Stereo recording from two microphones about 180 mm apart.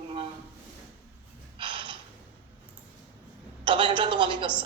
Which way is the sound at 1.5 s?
25° right (ahead or behind).